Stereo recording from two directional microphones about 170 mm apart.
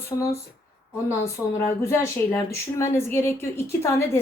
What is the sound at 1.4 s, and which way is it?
Speech, 5° right (ahead or behind).